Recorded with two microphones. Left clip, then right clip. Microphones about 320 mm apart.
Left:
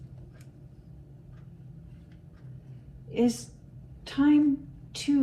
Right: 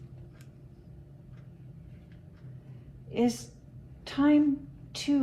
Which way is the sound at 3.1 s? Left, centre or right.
Right.